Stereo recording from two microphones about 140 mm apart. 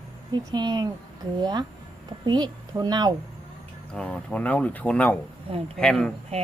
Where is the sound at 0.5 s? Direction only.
30° right (ahead or behind).